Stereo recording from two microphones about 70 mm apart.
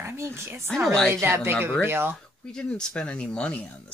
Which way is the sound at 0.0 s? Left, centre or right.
Right.